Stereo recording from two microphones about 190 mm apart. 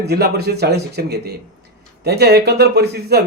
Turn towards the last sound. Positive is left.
turn(degrees=-60)  # may be behind; listen again after turning